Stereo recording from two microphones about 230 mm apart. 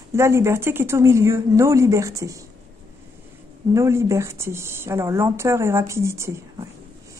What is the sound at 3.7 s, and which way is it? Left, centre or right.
Female singing, centre.